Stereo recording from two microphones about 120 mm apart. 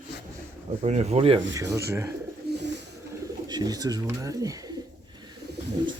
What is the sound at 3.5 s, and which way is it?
Speech, 30° right (ahead or behind).